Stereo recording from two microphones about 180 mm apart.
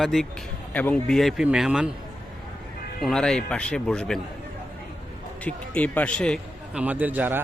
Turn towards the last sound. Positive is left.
turn(degrees=-10)  # may be behind; listen again after turning